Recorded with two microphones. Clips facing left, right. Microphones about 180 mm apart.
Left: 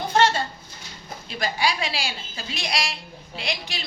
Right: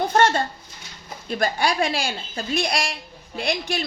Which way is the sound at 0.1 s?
50° right (ahead or behind).